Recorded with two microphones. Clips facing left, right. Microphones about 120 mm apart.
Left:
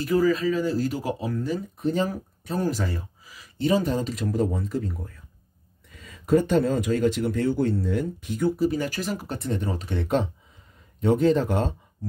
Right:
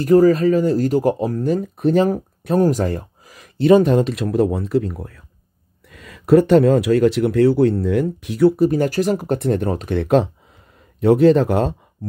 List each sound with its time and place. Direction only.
0.0 s speech: 50° right (ahead or behind)
2.6 s speech: 50° right (ahead or behind); by 5.2 s 70° right (ahead or behind)
5.9 s speech: 85° right